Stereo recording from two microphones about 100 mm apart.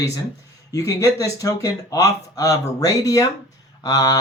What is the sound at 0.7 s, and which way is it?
Speech, 30° left (ahead or behind).